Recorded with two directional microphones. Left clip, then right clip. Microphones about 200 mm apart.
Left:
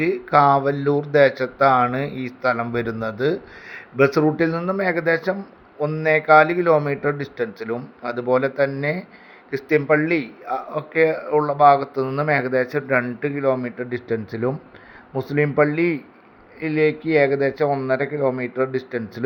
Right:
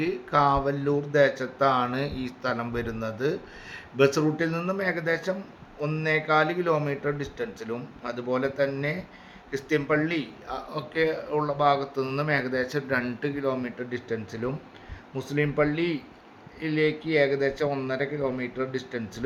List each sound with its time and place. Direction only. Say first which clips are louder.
0.0 s a man's voice: left 7 dB; 15° left (ahead or behind)